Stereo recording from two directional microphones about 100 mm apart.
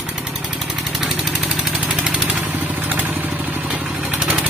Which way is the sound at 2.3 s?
20° right (ahead or behind).